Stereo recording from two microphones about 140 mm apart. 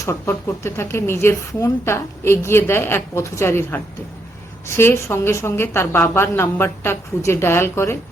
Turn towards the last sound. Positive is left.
turn(degrees=15)  # may be behind; listen again after turning